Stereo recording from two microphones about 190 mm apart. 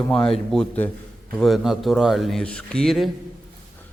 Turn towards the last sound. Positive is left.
turn(degrees=0)  # may be behind; listen again after turning